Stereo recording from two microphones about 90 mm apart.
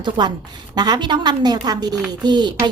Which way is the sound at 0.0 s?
55° right (ahead or behind).